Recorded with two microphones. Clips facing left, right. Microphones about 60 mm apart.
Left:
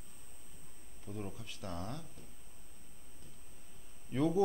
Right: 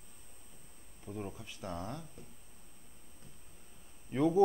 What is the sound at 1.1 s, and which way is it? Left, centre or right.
Speech, centre.